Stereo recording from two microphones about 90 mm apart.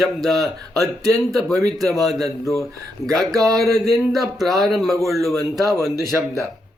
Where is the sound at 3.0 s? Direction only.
5° left (ahead or behind).